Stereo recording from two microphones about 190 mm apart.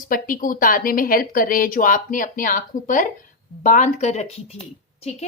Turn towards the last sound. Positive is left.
turn(degrees=35)  # may be behind; listen again after turning